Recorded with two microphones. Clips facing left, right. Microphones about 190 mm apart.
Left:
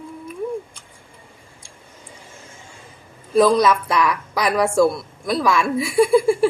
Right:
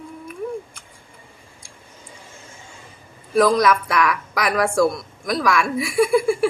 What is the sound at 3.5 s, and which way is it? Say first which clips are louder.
A woman's voice: left 1 dB; 30° left (ahead or behind).